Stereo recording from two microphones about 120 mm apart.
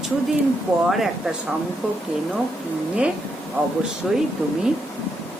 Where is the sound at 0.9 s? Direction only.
Centre (ahead or behind).